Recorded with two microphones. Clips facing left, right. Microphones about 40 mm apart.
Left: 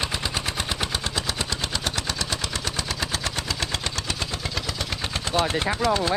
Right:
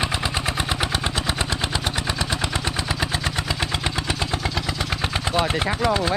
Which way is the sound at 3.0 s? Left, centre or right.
Centre.